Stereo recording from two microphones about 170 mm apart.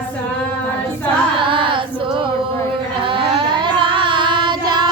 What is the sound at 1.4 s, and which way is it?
Singing, 30° right (ahead or behind).